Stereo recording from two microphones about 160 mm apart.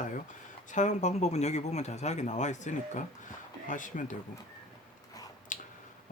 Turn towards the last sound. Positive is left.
turn(degrees=55)  # may be behind; listen again after turning